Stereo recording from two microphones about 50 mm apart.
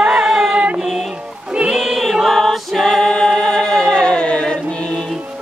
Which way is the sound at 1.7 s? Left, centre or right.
Centre.